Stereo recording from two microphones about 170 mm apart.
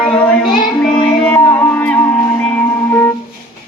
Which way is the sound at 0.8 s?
5° left (ahead or behind).